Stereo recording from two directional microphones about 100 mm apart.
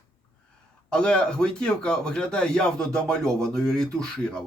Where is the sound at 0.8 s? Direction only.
10° left (ahead or behind).